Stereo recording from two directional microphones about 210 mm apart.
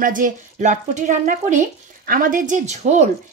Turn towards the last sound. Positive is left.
turn(degrees=-35)  # may be behind; listen again after turning